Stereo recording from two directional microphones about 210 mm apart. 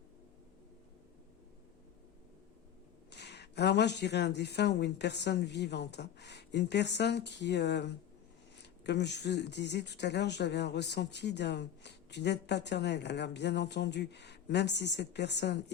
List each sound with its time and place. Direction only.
3.1 s speech: 55° left (ahead or behind)